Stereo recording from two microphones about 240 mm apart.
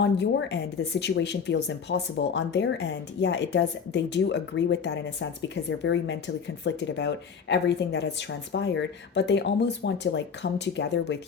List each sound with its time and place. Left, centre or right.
0.0 s speech: left